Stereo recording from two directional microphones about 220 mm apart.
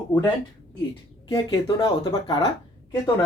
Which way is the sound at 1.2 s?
20° left (ahead or behind).